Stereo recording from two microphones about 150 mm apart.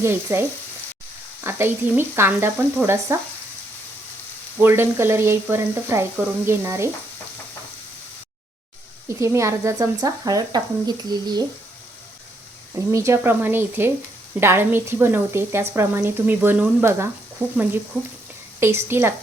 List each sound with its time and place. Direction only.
0.0 s frying: 15° right (ahead or behind)
1.5 s frying: 15° right (ahead or behind)
4.5 s frying: 15° right (ahead or behind)
9.0 s speech: 20° right (ahead or behind)
12.7 s frying: 20° right (ahead or behind)
18.6 s frying: 15° right (ahead or behind)